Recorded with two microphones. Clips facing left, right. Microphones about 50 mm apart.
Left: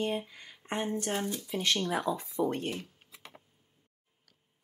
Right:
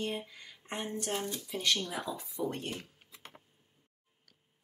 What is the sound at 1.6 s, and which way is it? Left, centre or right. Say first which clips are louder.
Speech: left 3 dB; left.